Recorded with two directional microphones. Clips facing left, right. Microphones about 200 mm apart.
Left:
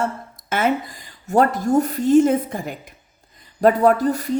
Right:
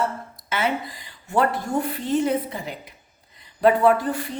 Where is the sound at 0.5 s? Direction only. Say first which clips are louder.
Left 4 dB; 50° left (ahead or behind).